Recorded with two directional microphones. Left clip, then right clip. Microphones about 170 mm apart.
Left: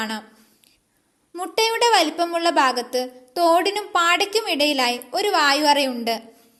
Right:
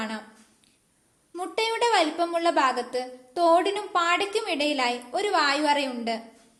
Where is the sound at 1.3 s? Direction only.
40° left (ahead or behind).